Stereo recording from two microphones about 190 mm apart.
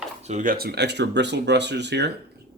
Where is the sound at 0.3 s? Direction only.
45° right (ahead or behind).